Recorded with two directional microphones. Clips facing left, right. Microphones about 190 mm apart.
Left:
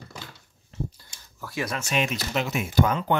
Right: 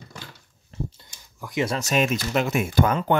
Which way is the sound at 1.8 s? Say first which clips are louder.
Right 4 dB; 40° right (ahead or behind).